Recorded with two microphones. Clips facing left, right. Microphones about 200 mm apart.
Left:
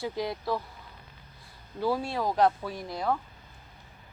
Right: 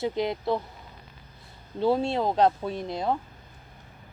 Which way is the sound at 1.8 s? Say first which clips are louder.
Right 5 dB; 25° right (ahead or behind).